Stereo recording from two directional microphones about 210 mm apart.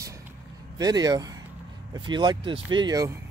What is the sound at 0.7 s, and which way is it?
Speech, 20° right (ahead or behind).